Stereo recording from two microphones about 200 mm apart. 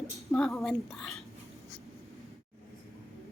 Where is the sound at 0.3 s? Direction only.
5° left (ahead or behind).